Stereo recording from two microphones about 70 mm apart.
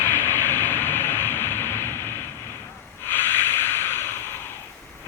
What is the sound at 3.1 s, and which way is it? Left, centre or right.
Snort, left.